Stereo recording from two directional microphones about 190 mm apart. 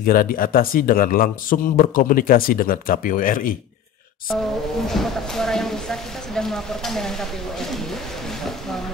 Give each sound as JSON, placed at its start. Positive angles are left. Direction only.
{"t": 0.0, "sound": "speech", "side_deg": 50}
{"t": 4.8, "sound": "speech", "side_deg": 0}